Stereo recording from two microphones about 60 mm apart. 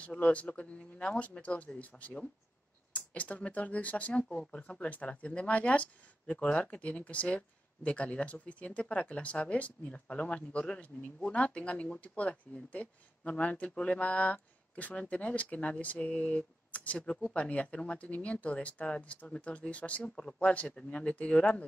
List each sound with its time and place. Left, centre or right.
0.0 s speech: left